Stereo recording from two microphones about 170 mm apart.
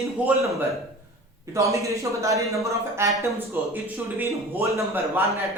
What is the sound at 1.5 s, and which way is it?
A man's voice, 20° right (ahead or behind).